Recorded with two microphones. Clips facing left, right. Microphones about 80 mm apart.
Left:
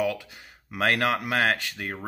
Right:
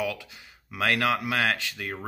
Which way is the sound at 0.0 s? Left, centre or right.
Left.